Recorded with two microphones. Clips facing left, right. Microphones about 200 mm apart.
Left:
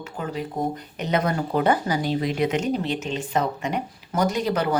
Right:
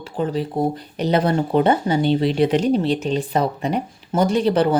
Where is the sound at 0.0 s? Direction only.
30° right (ahead or behind).